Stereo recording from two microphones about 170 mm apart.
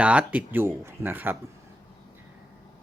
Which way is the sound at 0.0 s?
5° right (ahead or behind).